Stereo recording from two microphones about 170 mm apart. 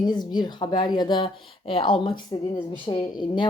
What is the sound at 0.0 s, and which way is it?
Speech, 25° left (ahead or behind).